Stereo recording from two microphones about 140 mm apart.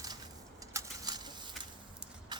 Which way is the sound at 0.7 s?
25° right (ahead or behind).